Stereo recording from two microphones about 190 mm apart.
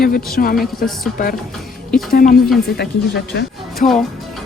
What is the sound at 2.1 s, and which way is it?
Speech, 50° left (ahead or behind).